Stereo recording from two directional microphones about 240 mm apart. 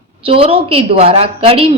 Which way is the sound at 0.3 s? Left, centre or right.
Right.